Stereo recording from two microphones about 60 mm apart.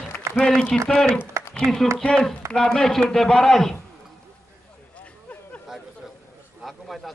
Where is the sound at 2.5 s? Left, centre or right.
Centre.